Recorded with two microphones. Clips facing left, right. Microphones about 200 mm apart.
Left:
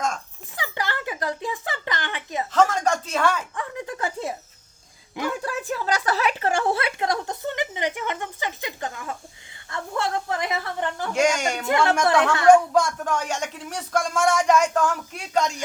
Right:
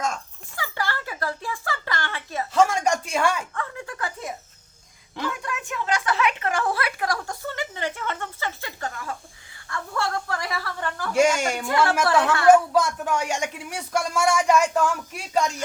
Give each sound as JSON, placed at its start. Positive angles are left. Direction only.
{"t": 0.5, "sound": "speech", "side_deg": 20}
{"t": 2.5, "sound": "speech", "side_deg": -10}
{"t": 3.5, "sound": "a sound", "side_deg": 20}
{"t": 5.3, "sound": "a woman's voice", "side_deg": 35}
{"t": 11.1, "sound": "speech", "side_deg": -10}
{"t": 12.2, "sound": "a woman's voice", "side_deg": 20}
{"t": 12.7, "sound": "speech", "side_deg": -5}